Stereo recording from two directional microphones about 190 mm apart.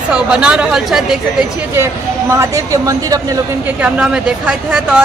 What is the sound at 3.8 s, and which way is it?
Speech, 5° right (ahead or behind).